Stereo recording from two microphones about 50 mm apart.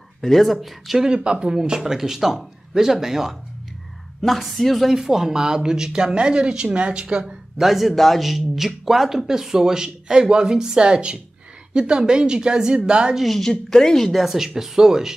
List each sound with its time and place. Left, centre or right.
0.2 s speech: centre
1.0 s speech: centre
7.5 s speech: centre
13.2 s speech: centre
13.5 s speech: centre